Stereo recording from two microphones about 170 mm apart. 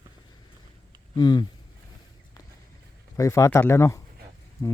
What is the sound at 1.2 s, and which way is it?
Speech, 25° left (ahead or behind).